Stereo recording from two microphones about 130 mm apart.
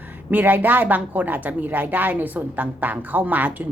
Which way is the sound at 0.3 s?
15° right (ahead or behind).